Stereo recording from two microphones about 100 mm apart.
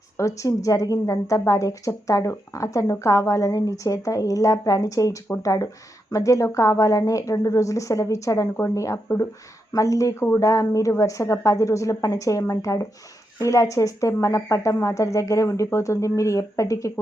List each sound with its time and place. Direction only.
0.2 s a woman's voice: 30° left (ahead or behind)